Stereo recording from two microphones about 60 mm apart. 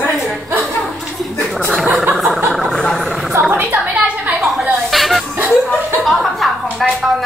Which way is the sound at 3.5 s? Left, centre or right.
Right.